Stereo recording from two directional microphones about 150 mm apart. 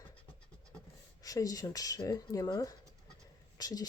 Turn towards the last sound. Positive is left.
turn(degrees=25)  # may be behind; listen again after turning